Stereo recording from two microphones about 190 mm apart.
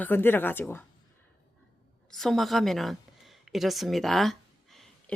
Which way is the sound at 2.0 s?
Centre (ahead or behind).